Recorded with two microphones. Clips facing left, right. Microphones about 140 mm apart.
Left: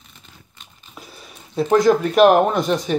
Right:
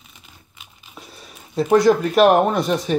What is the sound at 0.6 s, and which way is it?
Speech, centre (ahead or behind).